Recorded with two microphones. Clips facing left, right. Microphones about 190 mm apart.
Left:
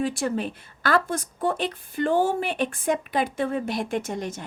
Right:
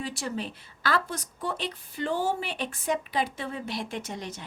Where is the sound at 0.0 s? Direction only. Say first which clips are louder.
Left 7 dB; 50° left (ahead or behind).